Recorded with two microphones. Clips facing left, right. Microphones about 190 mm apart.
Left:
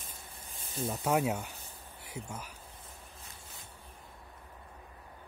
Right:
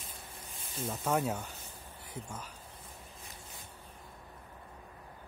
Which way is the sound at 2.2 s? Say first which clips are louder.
Left 2 dB; 80° left.